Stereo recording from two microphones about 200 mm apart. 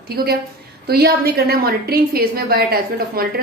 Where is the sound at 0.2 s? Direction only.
50° right (ahead or behind).